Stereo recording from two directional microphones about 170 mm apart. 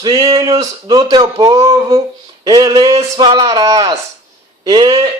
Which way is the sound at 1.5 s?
15° right (ahead or behind).